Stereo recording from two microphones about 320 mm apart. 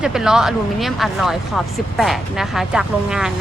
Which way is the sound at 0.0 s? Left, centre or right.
Centre.